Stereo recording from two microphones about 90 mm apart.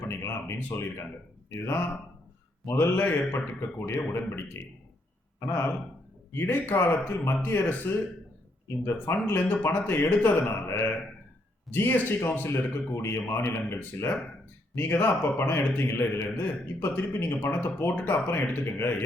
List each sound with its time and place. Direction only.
0.0 s speech: 25° left (ahead or behind)